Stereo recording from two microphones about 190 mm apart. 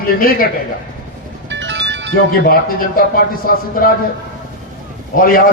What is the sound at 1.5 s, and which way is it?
Music, 70° right (ahead or behind).